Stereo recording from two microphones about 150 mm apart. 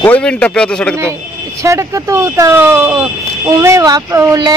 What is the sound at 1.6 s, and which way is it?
Speech, 20° right (ahead or behind).